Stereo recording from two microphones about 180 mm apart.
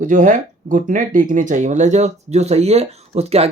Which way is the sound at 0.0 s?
45° right (ahead or behind).